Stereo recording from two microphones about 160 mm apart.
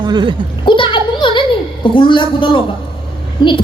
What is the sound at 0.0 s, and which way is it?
Speech, 25° right (ahead or behind).